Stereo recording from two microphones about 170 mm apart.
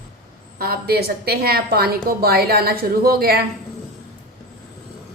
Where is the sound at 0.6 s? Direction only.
65° right (ahead or behind).